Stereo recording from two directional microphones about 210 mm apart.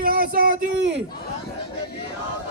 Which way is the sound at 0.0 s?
45° right (ahead or behind).